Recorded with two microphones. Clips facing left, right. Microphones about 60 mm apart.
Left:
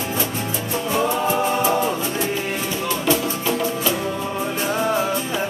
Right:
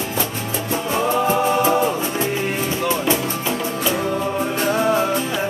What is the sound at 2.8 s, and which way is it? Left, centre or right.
Music, right.